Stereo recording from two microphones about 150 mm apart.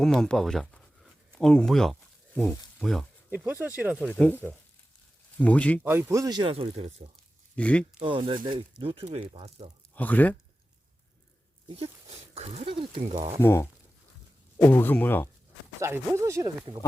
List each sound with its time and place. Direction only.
0.0 s a sound: 5° left (ahead or behind)
2.7 s speech: centre (ahead or behind)
3.2 s speech: 10° right (ahead or behind)
4.1 s speech: 10° left (ahead or behind)
5.8 s speech: 15° right (ahead or behind); by 6.9 s 40° right (ahead or behind)
7.5 s speech: 10° left (ahead or behind)
8.0 s speech: 35° right (ahead or behind)
9.9 s speech: 10° left (ahead or behind)
12.3 s speech: 45° right (ahead or behind)
13.4 s speech: 15° left (ahead or behind)
15.8 s speech: 20° right (ahead or behind)
16.7 s speech: 30° right (ahead or behind)